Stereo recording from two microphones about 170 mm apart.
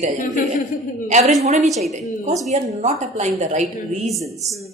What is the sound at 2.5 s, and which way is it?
A woman's voice, 45° right (ahead or behind).